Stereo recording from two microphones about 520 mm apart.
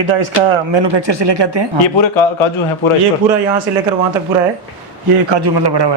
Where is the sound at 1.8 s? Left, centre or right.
Left.